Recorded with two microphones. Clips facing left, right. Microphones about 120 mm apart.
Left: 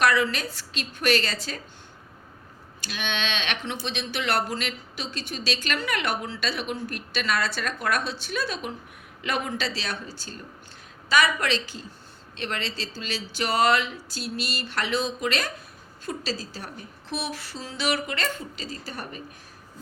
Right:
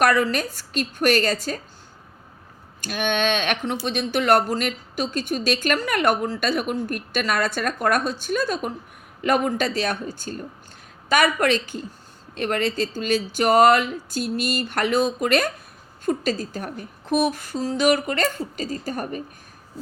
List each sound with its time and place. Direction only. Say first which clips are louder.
0.0 s speech: right 3 dB; 45° right (ahead or behind)
2.8 s speech: right 8 dB; 50° right (ahead or behind)